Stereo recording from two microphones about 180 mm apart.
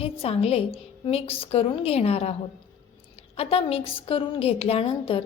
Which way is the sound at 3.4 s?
30° left (ahead or behind).